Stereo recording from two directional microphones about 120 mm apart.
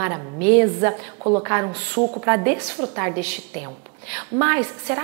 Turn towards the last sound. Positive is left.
turn(degrees=-25)  # may be behind; listen again after turning